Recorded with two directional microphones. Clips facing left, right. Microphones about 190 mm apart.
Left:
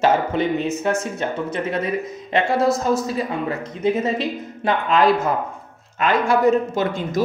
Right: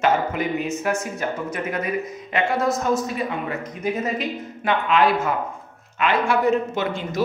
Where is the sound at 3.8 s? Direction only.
30° left (ahead or behind).